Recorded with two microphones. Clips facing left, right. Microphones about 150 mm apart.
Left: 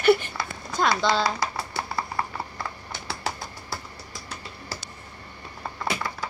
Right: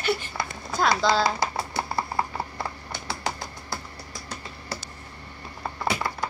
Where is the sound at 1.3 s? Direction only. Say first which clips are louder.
Right 2 dB; 25° right (ahead or behind).